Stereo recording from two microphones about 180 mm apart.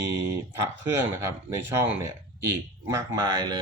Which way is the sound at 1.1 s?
15° right (ahead or behind).